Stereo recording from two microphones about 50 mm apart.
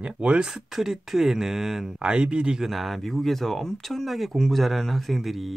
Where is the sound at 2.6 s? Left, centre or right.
Centre.